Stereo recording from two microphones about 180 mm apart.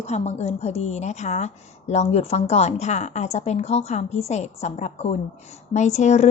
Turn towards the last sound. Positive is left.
turn(degrees=40)  # may be behind; listen again after turning